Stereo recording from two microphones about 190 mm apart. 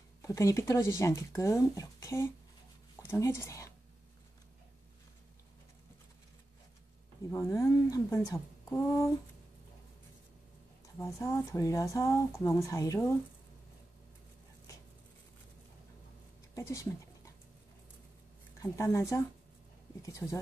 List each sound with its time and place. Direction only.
0.2 s speech: 15° left (ahead or behind)
7.2 s speech: 15° left (ahead or behind)
11.0 s speech: 15° left (ahead or behind)
16.5 s a sound: 15° left (ahead or behind)
18.6 s speech: 15° left (ahead or behind)